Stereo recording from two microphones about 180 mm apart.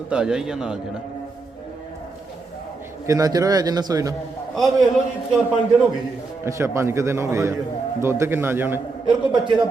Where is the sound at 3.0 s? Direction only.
20° right (ahead or behind).